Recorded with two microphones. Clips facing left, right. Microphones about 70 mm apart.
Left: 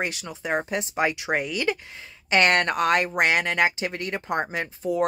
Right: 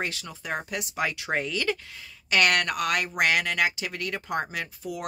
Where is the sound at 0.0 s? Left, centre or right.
Left.